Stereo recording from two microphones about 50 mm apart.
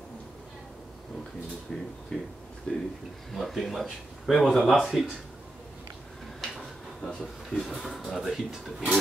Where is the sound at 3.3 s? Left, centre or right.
Centre.